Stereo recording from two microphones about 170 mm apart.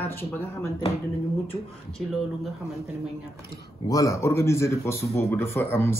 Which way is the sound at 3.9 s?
20° left (ahead or behind).